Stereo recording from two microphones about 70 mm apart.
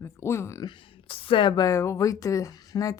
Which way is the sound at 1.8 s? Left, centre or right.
Left.